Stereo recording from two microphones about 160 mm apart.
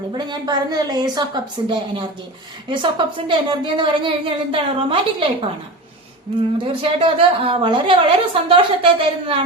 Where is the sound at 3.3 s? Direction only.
30° right (ahead or behind).